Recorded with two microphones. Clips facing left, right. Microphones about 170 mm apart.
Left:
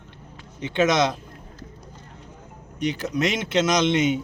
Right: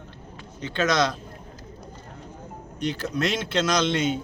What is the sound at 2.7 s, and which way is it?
Speech, 15° left (ahead or behind).